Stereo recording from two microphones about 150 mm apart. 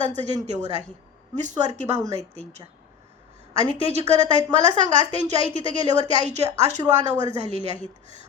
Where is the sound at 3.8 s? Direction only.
45° right (ahead or behind).